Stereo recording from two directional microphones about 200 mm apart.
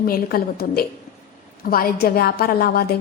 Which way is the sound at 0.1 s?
50° left (ahead or behind).